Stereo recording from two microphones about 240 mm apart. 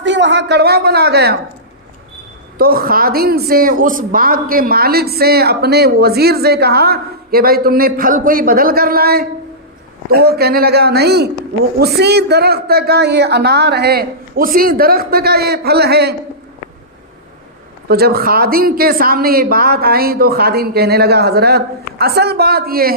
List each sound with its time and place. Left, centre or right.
0.0 s a woman's voice: right
2.6 s a woman's voice: right
17.8 s a woman's voice: right